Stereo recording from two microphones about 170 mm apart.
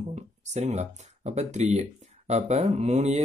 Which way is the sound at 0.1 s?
40° right (ahead or behind).